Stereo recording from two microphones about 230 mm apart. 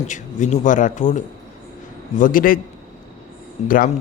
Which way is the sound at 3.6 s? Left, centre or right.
Left.